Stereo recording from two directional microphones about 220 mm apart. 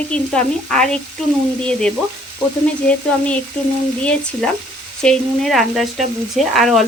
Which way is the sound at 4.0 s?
5° left (ahead or behind).